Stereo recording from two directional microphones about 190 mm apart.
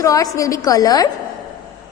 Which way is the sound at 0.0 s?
15° left (ahead or behind).